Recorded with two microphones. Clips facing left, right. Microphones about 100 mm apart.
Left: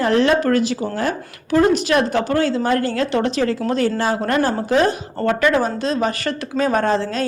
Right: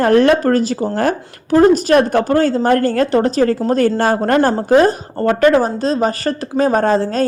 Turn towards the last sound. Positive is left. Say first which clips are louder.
# right 4 dB
turn(degrees=-40)  # may be behind; listen again after turning